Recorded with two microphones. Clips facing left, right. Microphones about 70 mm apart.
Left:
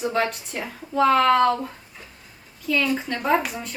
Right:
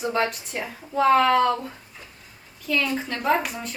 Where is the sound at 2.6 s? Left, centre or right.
Centre.